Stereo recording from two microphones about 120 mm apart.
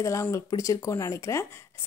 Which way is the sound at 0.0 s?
25° left (ahead or behind).